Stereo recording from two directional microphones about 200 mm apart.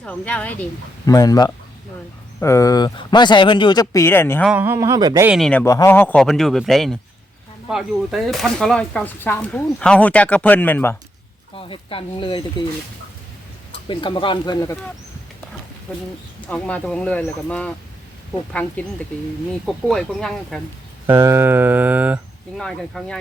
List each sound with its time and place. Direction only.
0.0 s speech: 5° left (ahead or behind)
1.1 s speech: 20° left (ahead or behind)
4.4 s a sound: 10° right (ahead or behind)
5.3 s speech: 5° left (ahead or behind)
11.5 s speech: 25° left (ahead or behind)
13.8 s speech: 25° left (ahead or behind)
16.5 s speech: 5° left (ahead or behind)
18.8 s speech: 10° left (ahead or behind)
21.1 s a sound: 15° right (ahead or behind)
22.5 s speech: centre (ahead or behind)